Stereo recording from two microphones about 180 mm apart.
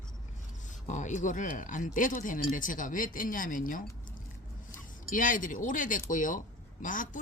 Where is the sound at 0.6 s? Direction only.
45° left (ahead or behind).